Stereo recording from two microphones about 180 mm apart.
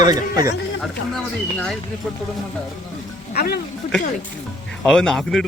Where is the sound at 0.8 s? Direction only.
5° left (ahead or behind).